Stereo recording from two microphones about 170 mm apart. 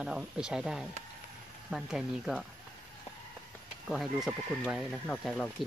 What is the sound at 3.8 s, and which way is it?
Speech, centre (ahead or behind).